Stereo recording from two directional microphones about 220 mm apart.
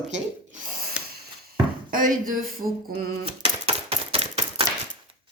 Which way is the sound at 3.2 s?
25° right (ahead or behind).